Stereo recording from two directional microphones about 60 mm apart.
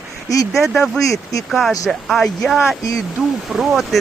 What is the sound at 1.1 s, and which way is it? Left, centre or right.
Speech, left.